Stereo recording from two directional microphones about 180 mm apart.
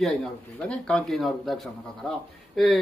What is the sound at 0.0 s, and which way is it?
Speech, 5° left (ahead or behind).